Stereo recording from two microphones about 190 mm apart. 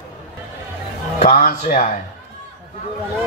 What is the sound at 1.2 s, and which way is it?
Speech, 45° left (ahead or behind).